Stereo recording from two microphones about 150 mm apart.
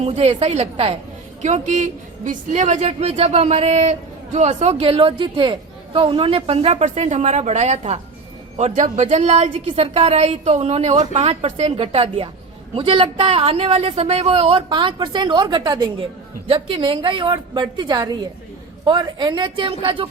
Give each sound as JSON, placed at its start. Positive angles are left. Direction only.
{"t": 0.0, "sound": "a woman's voice", "side_deg": -45}